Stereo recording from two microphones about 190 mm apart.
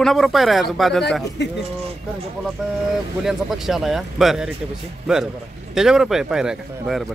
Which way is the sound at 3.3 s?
Centre (ahead or behind).